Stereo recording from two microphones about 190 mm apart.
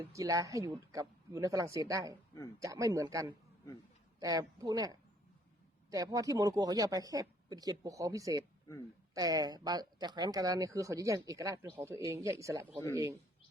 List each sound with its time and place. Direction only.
0.1 s speech: 15° right (ahead or behind)